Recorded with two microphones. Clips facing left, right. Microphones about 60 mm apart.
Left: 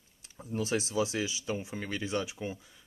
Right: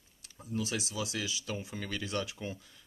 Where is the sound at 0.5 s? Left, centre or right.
Left.